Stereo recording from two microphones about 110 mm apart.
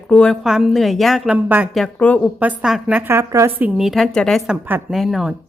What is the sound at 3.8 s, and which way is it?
Speech, centre (ahead or behind).